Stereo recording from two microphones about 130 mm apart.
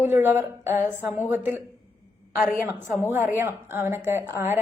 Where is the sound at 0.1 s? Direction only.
15° right (ahead or behind).